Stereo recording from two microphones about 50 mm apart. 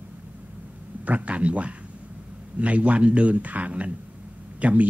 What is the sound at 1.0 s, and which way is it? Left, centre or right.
A man's voice, right.